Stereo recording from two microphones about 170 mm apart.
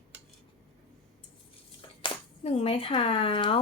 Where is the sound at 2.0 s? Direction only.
35° left (ahead or behind).